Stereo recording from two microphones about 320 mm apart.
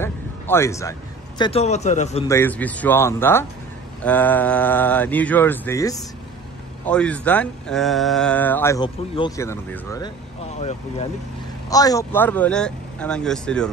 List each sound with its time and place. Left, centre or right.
0.0 s a sound: centre
1.4 s speech: centre
2.2 s speech: centre